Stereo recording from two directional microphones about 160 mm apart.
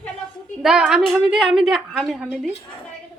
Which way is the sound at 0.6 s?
5° right (ahead or behind).